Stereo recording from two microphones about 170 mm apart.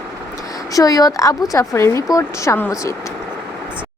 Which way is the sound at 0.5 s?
20° left (ahead or behind).